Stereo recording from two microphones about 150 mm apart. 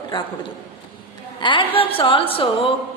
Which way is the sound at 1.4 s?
35° left (ahead or behind).